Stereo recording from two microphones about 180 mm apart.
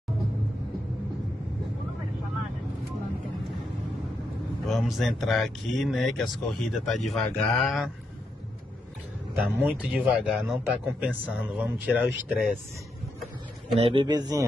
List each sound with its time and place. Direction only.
4.6 s speech: centre (ahead or behind)
9.3 s a man's voice: 10° right (ahead or behind)
13.7 s a man's voice: 30° right (ahead or behind)